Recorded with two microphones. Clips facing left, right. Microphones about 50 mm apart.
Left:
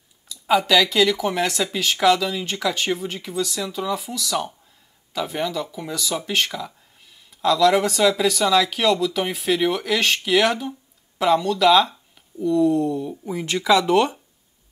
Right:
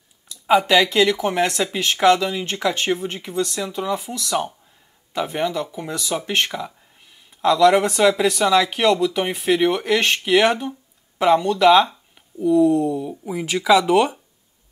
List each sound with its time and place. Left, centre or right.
0.5 s speech: right
3.7 s speech: right